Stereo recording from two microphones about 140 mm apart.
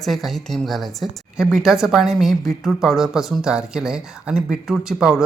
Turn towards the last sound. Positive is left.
turn(degrees=-5)  # may be behind; listen again after turning